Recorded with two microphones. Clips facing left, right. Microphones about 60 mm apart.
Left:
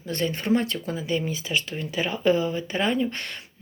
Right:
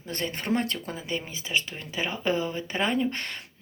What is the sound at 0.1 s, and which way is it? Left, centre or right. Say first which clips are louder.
Speech: left 5 dB; right.